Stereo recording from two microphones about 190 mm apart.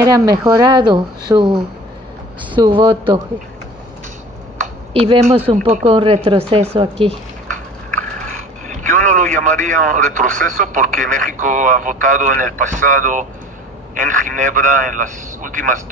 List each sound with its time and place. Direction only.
0.0 s speech: 20° right (ahead or behind)
2.5 s speech: 25° right (ahead or behind)
4.9 s speech: 30° right (ahead or behind)
8.6 s a man's voice: 40° right (ahead or behind)